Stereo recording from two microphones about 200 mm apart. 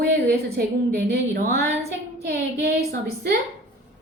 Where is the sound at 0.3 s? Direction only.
50° right (ahead or behind).